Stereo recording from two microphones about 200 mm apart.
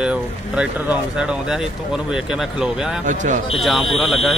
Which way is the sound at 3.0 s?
40° right (ahead or behind).